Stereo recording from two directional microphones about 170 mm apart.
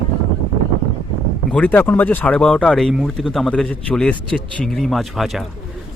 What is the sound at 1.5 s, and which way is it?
Speech, 5° left (ahead or behind).